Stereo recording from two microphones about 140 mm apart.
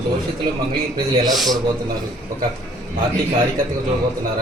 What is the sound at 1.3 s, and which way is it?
Speech, centre (ahead or behind).